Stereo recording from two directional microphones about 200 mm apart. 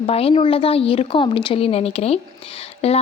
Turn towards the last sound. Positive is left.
turn(degrees=30)  # may be behind; listen again after turning